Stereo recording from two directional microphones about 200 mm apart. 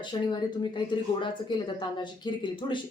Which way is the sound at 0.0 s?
20° left (ahead or behind).